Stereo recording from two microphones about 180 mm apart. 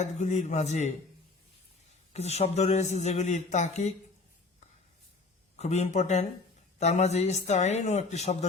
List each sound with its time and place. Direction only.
0.0 s a man's voice: 40° left (ahead or behind)
2.1 s a man's voice: 35° left (ahead or behind)
5.5 s a man's voice: 40° left (ahead or behind)